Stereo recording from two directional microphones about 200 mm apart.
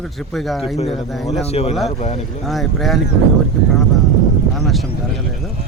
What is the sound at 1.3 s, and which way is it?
Speech, 30° left (ahead or behind).